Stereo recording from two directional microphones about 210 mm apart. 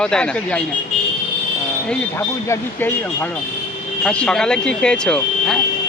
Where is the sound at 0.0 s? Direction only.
5° left (ahead or behind).